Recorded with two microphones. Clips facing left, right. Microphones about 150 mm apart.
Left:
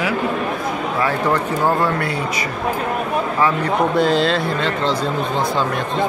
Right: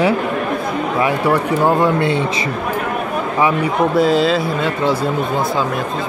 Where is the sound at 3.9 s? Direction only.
Centre (ahead or behind).